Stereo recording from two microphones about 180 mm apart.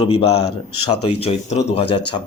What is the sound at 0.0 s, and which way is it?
Speech, 30° left (ahead or behind).